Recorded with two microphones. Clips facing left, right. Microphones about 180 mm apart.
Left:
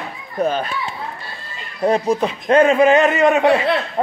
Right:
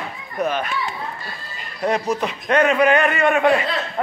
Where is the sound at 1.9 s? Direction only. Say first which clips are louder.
Left 4 dB; 30° left (ahead or behind).